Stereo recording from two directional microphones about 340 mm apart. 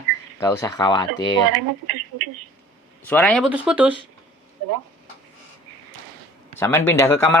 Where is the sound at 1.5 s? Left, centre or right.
Right.